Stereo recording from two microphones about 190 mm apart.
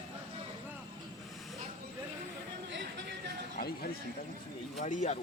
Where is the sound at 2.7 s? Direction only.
65° right (ahead or behind).